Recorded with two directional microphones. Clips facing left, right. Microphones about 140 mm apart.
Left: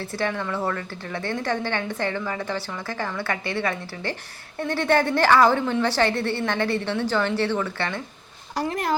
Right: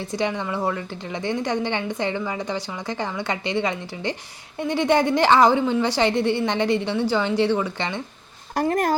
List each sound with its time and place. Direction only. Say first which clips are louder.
0.0 s a woman's voice: right 2 dB; 15° right (ahead or behind)
8.6 s speech: right 4 dB; 45° right (ahead or behind)